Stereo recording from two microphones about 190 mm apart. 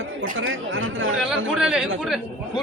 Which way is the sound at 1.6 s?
5° right (ahead or behind).